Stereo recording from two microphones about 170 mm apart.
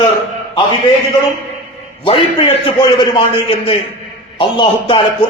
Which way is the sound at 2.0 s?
30° left (ahead or behind).